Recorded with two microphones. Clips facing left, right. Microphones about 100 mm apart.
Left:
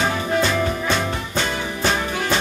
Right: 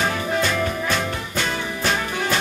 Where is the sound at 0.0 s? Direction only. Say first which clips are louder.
Left 2 dB; 20° left (ahead or behind).